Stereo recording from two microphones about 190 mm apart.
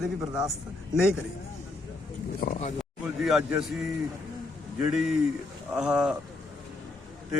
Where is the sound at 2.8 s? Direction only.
Centre (ahead or behind).